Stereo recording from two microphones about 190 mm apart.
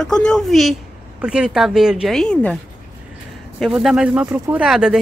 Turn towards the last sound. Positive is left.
turn(degrees=-5)  # may be behind; listen again after turning